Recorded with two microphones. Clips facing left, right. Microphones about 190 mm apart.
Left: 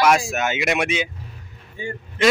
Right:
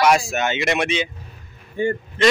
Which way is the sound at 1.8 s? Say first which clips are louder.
Right 10 dB; 55° right (ahead or behind).